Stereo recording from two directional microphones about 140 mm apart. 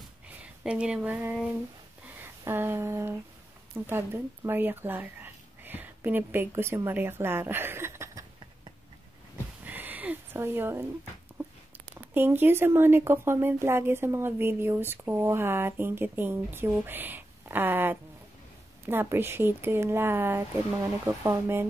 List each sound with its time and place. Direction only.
0.3 s speech: 10° right (ahead or behind)
9.7 s a sound: 10° right (ahead or behind)
11.9 s speech: 15° right (ahead or behind)